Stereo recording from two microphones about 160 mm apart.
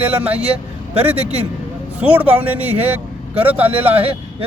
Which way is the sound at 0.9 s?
40° right (ahead or behind).